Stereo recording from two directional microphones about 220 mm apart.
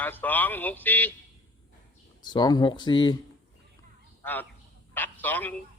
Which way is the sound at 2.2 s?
20° left (ahead or behind).